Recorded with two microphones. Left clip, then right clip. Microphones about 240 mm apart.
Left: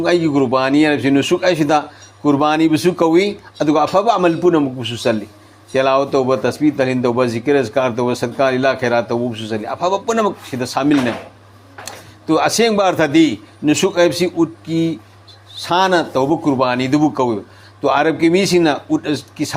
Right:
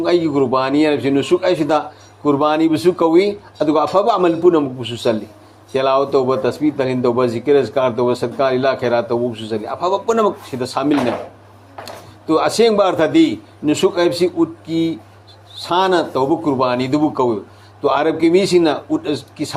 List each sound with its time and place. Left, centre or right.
0.0 s speech: left
12.3 s speech: left